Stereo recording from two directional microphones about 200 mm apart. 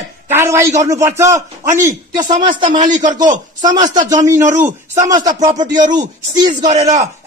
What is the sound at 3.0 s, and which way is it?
A man's voice, 40° right (ahead or behind).